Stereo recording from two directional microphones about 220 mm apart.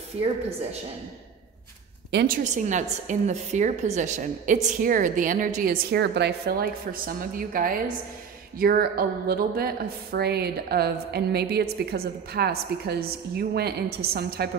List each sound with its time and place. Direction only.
2.0 s a woman's voice: 45° right (ahead or behind)